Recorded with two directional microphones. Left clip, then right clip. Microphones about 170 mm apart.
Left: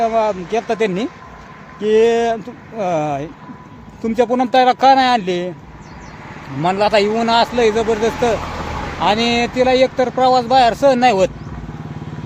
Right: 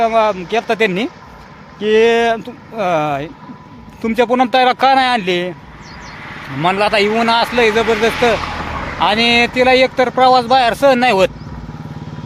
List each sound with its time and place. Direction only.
0.0 s speech: 10° right (ahead or behind)
6.2 s a sound: 5° left (ahead or behind)
6.6 s speech: 15° right (ahead or behind)
8.4 s vehicle: 60° left (ahead or behind)
9.0 s speech: 15° right (ahead or behind)